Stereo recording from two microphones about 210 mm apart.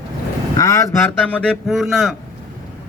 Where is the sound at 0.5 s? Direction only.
15° left (ahead or behind); by 2.1 s centre (ahead or behind).